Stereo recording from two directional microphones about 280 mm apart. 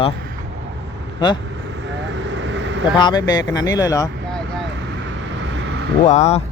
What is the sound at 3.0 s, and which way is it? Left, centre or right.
Speech, centre.